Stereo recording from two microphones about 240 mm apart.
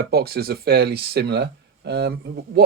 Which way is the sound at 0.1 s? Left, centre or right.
Right.